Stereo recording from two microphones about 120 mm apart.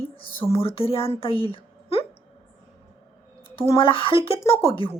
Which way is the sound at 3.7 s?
50° left (ahead or behind).